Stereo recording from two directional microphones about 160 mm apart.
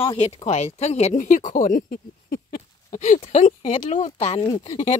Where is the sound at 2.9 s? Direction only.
45° left (ahead or behind).